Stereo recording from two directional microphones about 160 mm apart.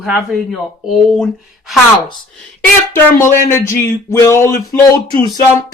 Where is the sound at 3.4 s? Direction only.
15° left (ahead or behind).